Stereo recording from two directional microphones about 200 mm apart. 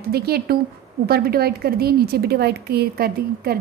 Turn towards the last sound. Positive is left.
turn(degrees=-50)  # may be behind; listen again after turning